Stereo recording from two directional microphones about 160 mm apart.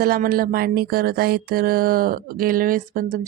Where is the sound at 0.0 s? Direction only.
65° right (ahead or behind).